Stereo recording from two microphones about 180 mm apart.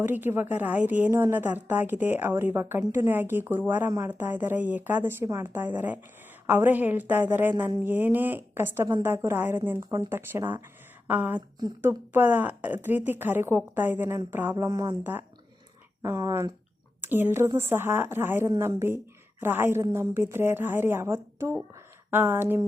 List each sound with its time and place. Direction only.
0.0 s a woman's voice: 10° right (ahead or behind)
14.3 s a sound: 10° right (ahead or behind)
16.0 s a woman's voice: 15° right (ahead or behind)